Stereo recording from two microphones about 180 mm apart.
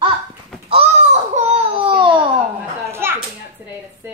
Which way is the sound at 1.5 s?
30° right (ahead or behind).